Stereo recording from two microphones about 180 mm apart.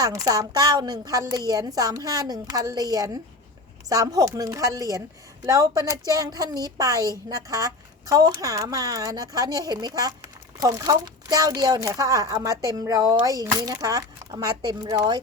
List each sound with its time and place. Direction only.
0.0 s speech: 20° right (ahead or behind)